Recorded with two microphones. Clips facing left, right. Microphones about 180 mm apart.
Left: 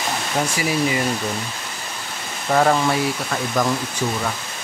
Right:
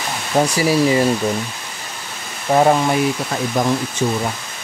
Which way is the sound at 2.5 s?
20° right (ahead or behind).